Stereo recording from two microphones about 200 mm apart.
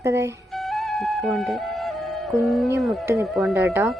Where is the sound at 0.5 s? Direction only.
Centre (ahead or behind).